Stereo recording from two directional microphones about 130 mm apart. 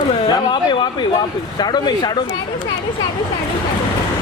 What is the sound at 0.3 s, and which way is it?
Speech, 35° left (ahead or behind).